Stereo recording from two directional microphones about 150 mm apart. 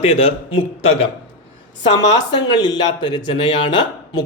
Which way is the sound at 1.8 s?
30° left (ahead or behind).